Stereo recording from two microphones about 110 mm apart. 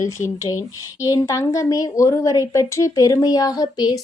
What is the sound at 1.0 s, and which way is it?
A woman's voice, 30° left (ahead or behind).